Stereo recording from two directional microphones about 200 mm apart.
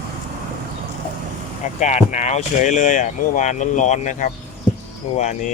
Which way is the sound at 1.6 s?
35° left (ahead or behind).